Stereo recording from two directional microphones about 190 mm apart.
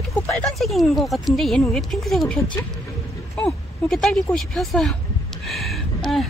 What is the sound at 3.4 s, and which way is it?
Speech, centre (ahead or behind).